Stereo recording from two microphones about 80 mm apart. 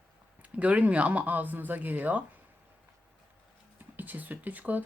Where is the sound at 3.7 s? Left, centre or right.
Right.